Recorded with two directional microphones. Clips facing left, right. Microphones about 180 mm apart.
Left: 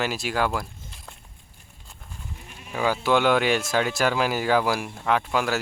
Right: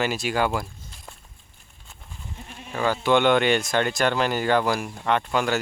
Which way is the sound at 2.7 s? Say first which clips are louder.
Right 1 dB; 10° left (ahead or behind).